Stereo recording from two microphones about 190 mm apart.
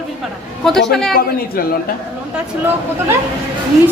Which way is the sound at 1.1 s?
50° left (ahead or behind).